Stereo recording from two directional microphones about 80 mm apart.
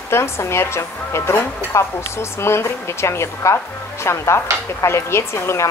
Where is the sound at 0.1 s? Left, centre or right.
Left.